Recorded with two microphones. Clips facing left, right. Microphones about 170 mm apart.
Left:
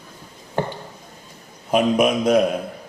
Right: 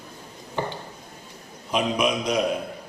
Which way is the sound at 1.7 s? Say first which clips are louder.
Left 6 dB; 50° left (ahead or behind).